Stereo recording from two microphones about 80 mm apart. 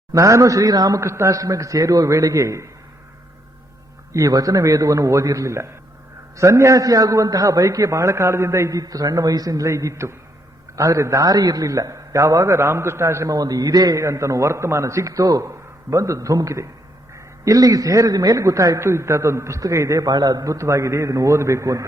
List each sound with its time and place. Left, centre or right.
0.1 s a man's voice: right
1.0 s a man's voice: right
4.1 s a man's voice: right